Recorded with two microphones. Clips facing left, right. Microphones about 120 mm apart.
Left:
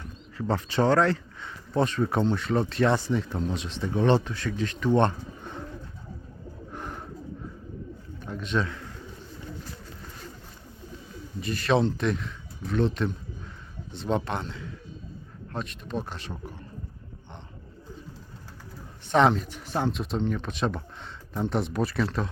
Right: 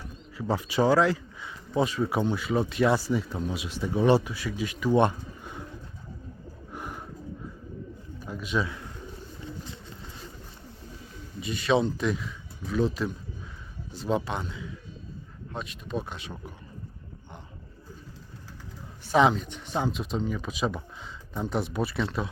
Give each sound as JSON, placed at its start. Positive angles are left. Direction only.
{"t": 0.3, "sound": "speech", "side_deg": -10}
{"t": 6.7, "sound": "bird", "side_deg": -10}
{"t": 8.2, "sound": "bird", "side_deg": -5}
{"t": 11.3, "sound": "speech", "side_deg": 0}
{"t": 19.0, "sound": "speech", "side_deg": 0}